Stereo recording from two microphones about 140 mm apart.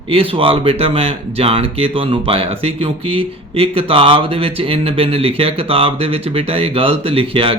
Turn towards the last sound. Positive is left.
turn(degrees=-40)  # may be behind; listen again after turning